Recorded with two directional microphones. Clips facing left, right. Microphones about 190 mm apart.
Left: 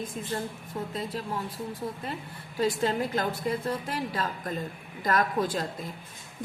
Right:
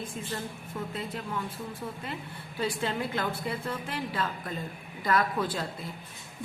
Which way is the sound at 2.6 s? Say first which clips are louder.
Left 4 dB; 40° left (ahead or behind).